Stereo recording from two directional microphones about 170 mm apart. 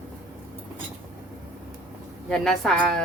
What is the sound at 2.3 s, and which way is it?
Speech, 5° left (ahead or behind).